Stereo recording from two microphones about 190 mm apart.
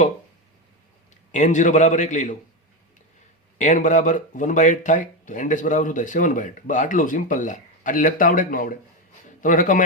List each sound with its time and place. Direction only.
1.3 s a man's voice: 40° left (ahead or behind)
3.6 s speech: 40° left (ahead or behind)